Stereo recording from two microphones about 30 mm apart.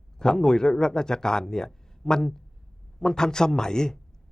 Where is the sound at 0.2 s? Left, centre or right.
Left.